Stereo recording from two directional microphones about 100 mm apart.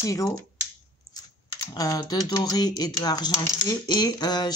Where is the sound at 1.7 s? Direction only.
40° left (ahead or behind).